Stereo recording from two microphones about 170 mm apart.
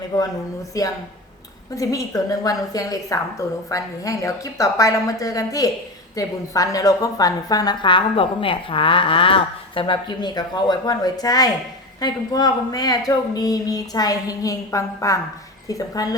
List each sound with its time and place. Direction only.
0.7 s a woman's voice: 20° left (ahead or behind)